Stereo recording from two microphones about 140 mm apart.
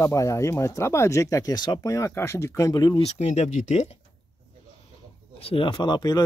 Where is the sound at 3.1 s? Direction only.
50° left (ahead or behind).